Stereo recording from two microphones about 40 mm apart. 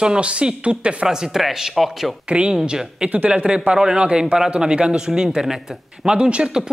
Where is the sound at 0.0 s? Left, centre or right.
Right.